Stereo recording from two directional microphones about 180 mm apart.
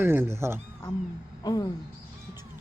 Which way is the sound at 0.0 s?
15° right (ahead or behind).